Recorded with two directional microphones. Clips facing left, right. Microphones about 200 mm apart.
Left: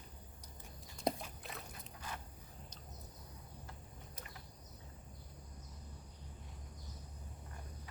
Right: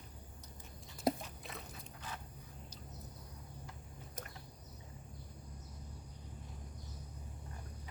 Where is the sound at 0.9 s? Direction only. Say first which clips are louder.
Right 3 dB; centre (ahead or behind).